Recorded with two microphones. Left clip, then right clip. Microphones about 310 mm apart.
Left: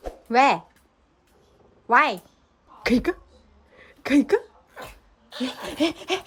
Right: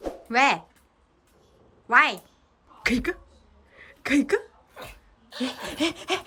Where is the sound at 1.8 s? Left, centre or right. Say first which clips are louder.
Left 1 dB; centre.